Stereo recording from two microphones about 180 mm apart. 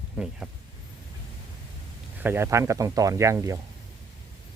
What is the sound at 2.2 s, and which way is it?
Speech, 15° right (ahead or behind).